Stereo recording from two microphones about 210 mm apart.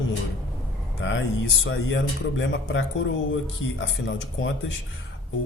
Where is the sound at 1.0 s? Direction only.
65° left (ahead or behind).